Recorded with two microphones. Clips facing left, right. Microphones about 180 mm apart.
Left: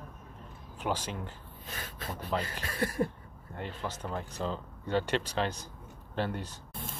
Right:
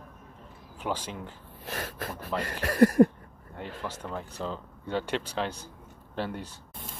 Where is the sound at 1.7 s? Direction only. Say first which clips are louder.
Right 5 dB; 75° right (ahead or behind).